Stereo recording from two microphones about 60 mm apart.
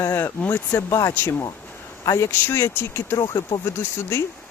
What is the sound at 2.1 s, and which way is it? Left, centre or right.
Speech, left.